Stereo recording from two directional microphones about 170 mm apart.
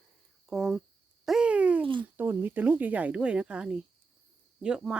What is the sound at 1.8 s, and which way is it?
Speech, 30° right (ahead or behind).